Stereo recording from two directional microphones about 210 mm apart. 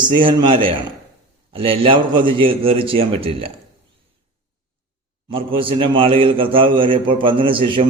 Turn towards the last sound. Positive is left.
turn(degrees=-25)  # may be behind; listen again after turning